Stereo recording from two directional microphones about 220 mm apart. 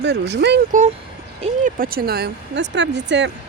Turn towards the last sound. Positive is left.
turn(degrees=-55)  # may be behind; listen again after turning